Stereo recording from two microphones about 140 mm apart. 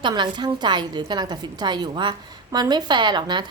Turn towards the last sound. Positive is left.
turn(degrees=-30)  # may be behind; listen again after turning